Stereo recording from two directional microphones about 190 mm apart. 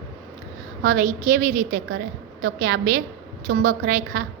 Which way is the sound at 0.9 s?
45° right (ahead or behind).